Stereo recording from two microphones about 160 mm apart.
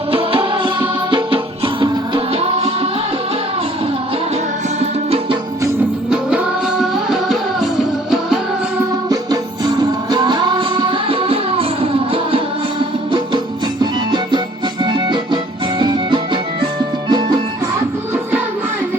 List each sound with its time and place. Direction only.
0.1 s music: 35° right (ahead or behind)
6.1 s music: 5° right (ahead or behind)
9.0 s music: 25° right (ahead or behind)